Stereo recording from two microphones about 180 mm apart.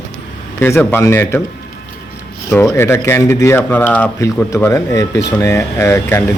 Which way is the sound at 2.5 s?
15° left (ahead or behind).